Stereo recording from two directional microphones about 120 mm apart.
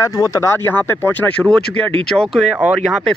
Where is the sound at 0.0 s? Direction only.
30° left (ahead or behind).